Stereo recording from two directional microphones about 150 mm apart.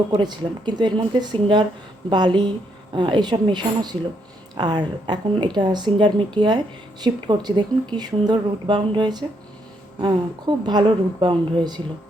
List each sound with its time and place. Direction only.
0.2 s a woman's voice: 30° right (ahead or behind)